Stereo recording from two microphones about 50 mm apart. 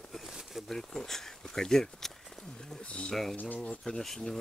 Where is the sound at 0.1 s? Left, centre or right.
Centre.